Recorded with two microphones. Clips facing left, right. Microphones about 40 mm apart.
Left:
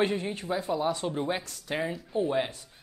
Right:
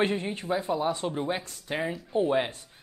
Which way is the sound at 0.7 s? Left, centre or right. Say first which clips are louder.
Right 1 dB; centre.